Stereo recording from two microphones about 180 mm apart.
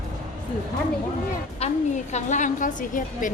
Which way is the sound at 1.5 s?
40° left (ahead or behind).